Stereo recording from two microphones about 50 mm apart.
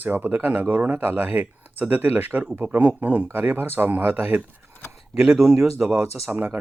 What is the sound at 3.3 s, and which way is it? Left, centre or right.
Speech, right.